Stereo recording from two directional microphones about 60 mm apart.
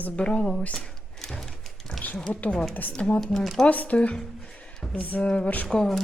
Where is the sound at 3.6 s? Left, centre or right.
Left.